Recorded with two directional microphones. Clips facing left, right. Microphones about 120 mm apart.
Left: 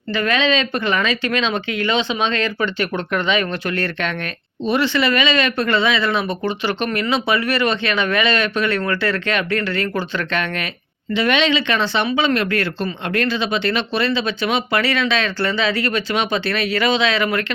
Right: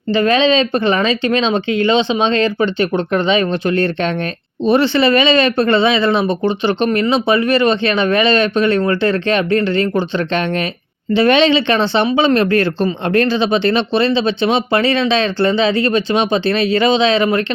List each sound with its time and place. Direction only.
0.1 s speech: 25° right (ahead or behind)